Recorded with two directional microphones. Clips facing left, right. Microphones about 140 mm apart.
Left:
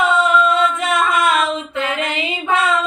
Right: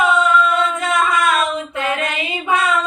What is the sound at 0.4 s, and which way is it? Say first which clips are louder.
Music: left 2 dB; 20° left (ahead or behind).